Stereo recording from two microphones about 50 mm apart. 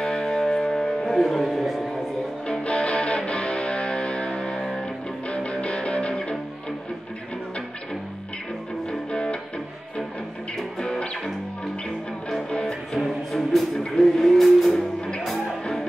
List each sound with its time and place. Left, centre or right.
0.0 s music: centre
2.4 s music: left
5.3 s music: left
9.1 s music: centre
10.8 s music: centre
12.4 s music: centre
13.0 s music: centre
14.7 s music: centre